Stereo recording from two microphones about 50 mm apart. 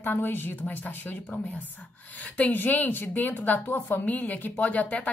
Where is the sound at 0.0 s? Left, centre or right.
Left.